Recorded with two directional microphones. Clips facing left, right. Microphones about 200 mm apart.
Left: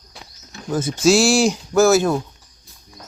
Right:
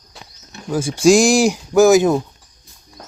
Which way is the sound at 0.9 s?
15° right (ahead or behind).